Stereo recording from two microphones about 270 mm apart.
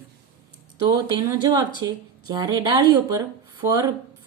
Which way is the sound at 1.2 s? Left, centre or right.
Centre.